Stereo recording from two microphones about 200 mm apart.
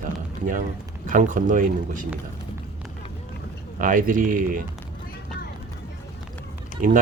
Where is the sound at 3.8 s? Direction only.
40° right (ahead or behind).